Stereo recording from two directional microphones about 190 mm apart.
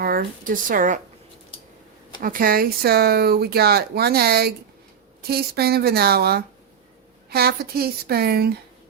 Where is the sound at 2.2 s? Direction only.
50° right (ahead or behind).